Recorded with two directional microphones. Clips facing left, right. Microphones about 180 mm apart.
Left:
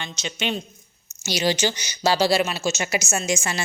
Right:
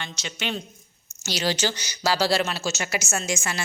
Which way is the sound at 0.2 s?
20° left (ahead or behind).